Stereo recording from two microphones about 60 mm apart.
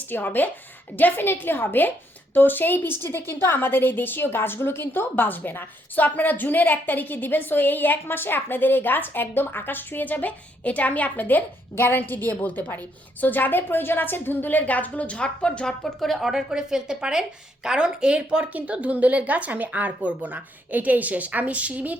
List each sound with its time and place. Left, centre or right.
0.1 s a woman's voice: left; by 16.3 s centre
16.3 s a woman's voice: centre; by 21.9 s right